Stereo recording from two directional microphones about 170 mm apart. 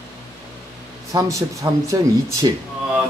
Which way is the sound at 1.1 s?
20° right (ahead or behind).